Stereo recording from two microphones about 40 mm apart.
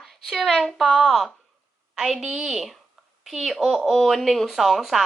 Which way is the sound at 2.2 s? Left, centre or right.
Centre.